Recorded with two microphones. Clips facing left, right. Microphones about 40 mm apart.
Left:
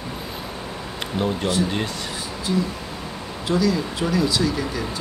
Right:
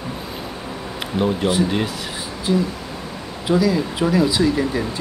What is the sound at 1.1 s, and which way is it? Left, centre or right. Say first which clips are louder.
Speech: right 4 dB; centre.